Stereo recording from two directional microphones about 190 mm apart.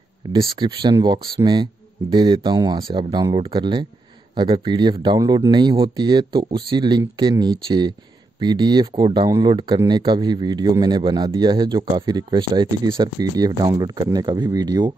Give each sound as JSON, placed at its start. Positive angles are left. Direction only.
{"t": 0.3, "sound": "speech", "side_deg": -25}